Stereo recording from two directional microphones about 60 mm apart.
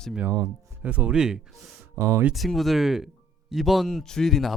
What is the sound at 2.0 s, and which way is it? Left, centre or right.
Speech, right.